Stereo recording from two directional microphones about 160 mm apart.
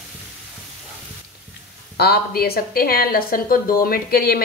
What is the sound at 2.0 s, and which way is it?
A woman's voice, 75° left (ahead or behind).